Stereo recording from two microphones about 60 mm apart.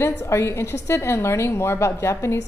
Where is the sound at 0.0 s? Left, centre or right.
Left.